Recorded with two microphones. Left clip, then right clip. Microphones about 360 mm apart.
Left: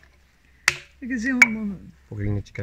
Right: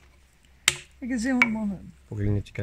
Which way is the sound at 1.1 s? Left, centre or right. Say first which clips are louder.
Left 2 dB; right.